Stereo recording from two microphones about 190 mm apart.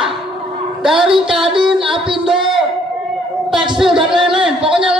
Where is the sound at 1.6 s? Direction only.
Centre (ahead or behind).